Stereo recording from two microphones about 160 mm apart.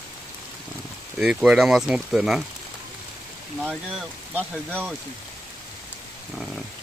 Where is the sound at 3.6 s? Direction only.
10° right (ahead or behind).